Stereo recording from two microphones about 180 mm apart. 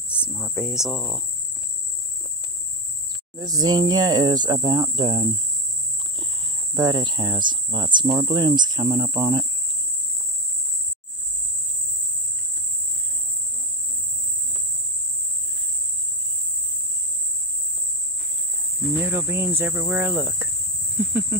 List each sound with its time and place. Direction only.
0.3 s speech: 5° right (ahead or behind)
3.3 s speech: 20° right (ahead or behind)
6.7 s speech: 20° right (ahead or behind)
18.9 s cricket: 15° right (ahead or behind)